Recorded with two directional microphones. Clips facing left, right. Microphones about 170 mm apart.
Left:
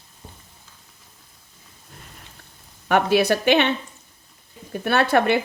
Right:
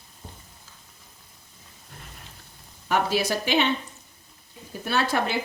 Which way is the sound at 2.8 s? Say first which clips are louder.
Left 6 dB; 65° left (ahead or behind).